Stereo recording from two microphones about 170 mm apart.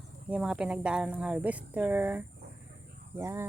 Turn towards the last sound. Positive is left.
turn(degrees=-15)  # may be behind; listen again after turning